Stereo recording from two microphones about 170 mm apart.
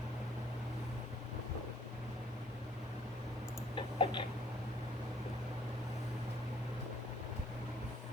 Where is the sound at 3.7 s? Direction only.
30° left (ahead or behind).